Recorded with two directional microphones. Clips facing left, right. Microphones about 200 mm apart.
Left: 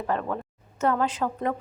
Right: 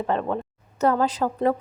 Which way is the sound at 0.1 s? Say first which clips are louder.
Right 2 dB; 25° right (ahead or behind).